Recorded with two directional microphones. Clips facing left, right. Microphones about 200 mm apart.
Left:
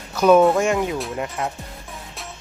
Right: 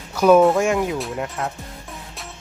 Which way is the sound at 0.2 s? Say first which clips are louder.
Right 1 dB; 5° right (ahead or behind).